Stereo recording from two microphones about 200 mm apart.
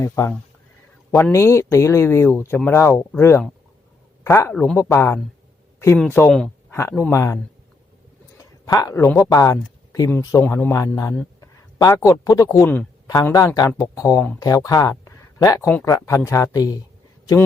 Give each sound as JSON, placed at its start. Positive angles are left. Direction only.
{"t": 0.0, "sound": "speech", "side_deg": 15}
{"t": 8.4, "sound": "speech", "side_deg": 15}